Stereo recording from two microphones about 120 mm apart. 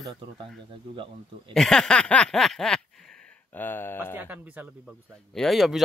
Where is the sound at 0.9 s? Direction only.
45° right (ahead or behind).